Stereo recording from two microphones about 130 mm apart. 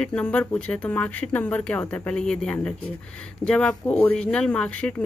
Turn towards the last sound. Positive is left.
turn(degrees=10)  # may be behind; listen again after turning